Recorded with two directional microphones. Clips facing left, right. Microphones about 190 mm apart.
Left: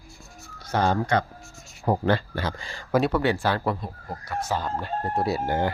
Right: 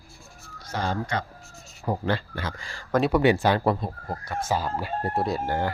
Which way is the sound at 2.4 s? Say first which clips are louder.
Left 4 dB; 30° left (ahead or behind).